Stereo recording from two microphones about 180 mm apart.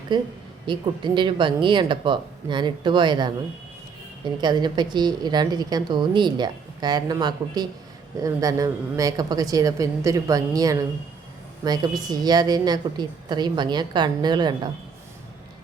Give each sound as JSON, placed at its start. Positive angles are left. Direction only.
{"t": 0.1, "sound": "a woman's voice", "side_deg": -25}